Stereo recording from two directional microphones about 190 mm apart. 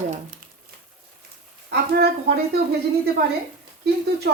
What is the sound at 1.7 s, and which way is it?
Speech, 55° right (ahead or behind).